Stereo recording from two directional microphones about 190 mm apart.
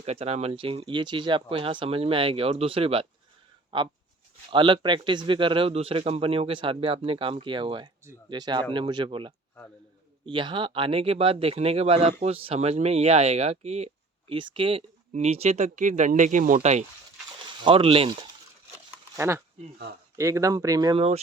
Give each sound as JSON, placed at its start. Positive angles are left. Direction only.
{"t": 0.0, "sound": "speech", "side_deg": -35}
{"t": 19.1, "sound": "speech", "side_deg": -15}